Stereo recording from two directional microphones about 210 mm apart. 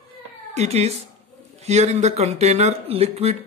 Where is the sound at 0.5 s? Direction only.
30° right (ahead or behind).